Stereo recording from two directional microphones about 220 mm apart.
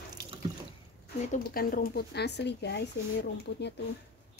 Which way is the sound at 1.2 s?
40° left (ahead or behind).